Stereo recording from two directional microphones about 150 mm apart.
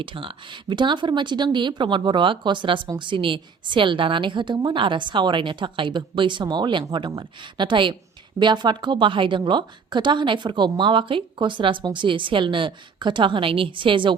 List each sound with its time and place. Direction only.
0.0 s speech: 35° right (ahead or behind)